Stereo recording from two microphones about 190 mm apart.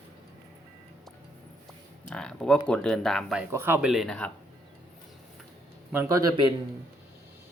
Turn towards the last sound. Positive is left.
turn(degrees=-20)  # may be behind; listen again after turning